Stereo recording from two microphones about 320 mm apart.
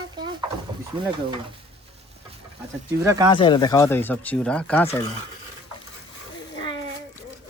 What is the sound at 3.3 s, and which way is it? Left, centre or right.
Speech, centre.